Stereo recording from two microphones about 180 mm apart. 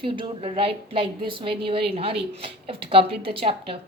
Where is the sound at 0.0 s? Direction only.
30° right (ahead or behind).